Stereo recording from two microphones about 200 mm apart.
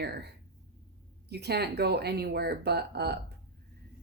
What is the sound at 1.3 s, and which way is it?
Speech, 55° right (ahead or behind).